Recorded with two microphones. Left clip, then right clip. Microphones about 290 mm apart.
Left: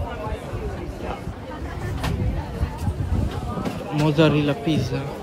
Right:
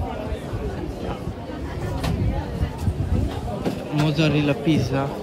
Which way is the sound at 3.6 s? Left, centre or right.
Centre.